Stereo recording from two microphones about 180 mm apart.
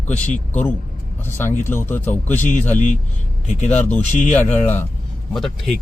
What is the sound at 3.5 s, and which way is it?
Speech, 40° left (ahead or behind).